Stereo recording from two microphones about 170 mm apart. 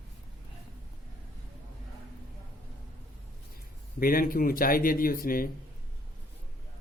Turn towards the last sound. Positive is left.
turn(degrees=60)  # may be behind; listen again after turning